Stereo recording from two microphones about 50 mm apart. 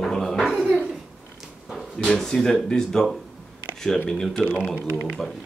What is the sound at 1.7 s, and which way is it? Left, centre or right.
Speech, centre.